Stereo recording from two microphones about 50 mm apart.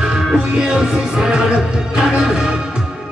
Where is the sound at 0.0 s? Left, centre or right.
Centre.